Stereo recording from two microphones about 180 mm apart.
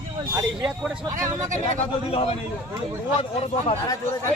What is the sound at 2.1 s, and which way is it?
Speech, 30° left (ahead or behind).